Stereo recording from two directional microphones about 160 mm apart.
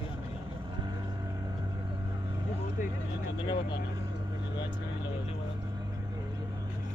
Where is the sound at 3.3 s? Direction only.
30° left (ahead or behind).